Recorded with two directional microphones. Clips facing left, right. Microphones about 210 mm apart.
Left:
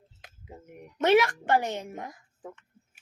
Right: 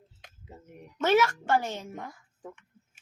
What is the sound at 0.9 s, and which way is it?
Speech, 15° left (ahead or behind).